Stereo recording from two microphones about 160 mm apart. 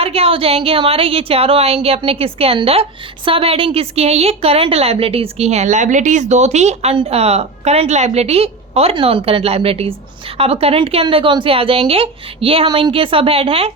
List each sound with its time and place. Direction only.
0.0 s a woman's voice: 35° right (ahead or behind)